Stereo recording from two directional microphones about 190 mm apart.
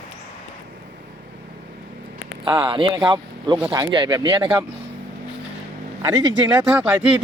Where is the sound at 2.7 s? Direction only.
25° right (ahead or behind).